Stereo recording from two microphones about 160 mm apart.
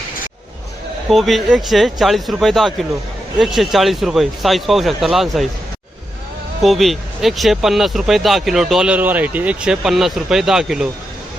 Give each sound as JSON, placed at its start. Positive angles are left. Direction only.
{"t": 1.1, "sound": "speech", "side_deg": 0}
{"t": 6.6, "sound": "speech", "side_deg": 0}